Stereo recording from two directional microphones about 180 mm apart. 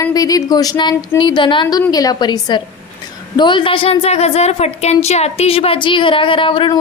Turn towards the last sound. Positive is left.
turn(degrees=30)  # may be behind; listen again after turning